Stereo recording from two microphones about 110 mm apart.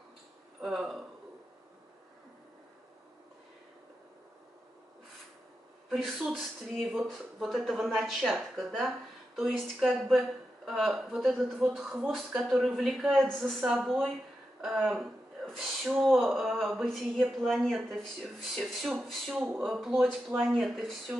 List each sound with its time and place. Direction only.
0.6 s speech: centre (ahead or behind)
5.9 s speech: centre (ahead or behind)
13.6 s speech: 15° right (ahead or behind)
13.8 s speech: 5° left (ahead or behind)